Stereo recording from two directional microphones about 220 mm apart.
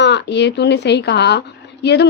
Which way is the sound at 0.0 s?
50° left (ahead or behind).